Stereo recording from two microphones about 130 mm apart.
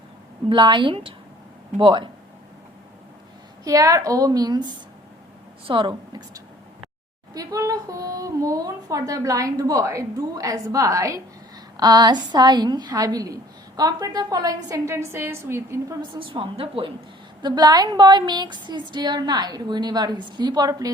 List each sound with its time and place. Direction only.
0.4 s a woman's voice: 35° right (ahead or behind)
3.6 s a woman's voice: 25° right (ahead or behind)
16.0 s a woman's voice: 40° right (ahead or behind)
17.4 s a woman's voice: 30° right (ahead or behind)